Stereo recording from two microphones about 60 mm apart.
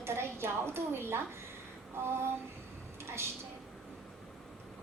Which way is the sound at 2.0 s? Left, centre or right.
Right.